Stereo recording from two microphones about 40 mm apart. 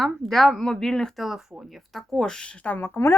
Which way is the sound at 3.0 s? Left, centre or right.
Left.